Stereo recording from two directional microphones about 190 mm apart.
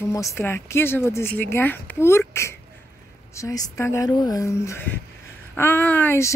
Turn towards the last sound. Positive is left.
turn(degrees=10)  # may be behind; listen again after turning